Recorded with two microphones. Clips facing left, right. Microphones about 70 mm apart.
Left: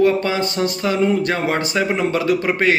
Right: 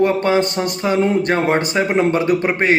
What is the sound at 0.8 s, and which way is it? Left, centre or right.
Speech, right.